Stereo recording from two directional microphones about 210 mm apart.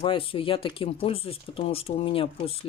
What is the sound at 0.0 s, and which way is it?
Speech, 25° left (ahead or behind).